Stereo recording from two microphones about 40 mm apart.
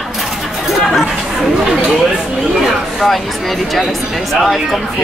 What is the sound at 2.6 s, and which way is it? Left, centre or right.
Chatter, centre.